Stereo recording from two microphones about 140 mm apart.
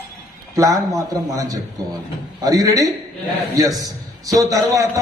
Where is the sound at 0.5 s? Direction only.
25° right (ahead or behind).